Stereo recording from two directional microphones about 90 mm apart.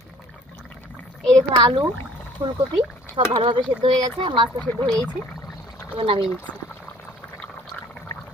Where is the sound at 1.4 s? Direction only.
55° right (ahead or behind).